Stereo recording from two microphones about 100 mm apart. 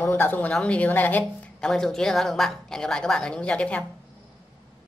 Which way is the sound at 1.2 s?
5° left (ahead or behind).